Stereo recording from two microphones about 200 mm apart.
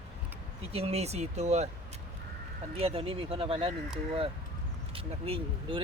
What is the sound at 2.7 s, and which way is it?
Speech, 30° right (ahead or behind).